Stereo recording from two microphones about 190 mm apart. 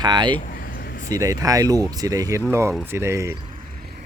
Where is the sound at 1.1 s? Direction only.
20° right (ahead or behind).